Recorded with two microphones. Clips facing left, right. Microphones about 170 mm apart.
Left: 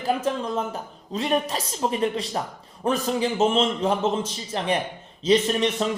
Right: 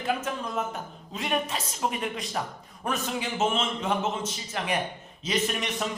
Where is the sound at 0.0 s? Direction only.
30° left (ahead or behind).